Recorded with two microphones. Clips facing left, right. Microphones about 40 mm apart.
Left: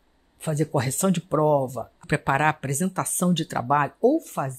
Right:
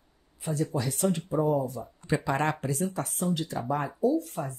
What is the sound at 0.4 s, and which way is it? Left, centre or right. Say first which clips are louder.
Speech: left 5 dB; left.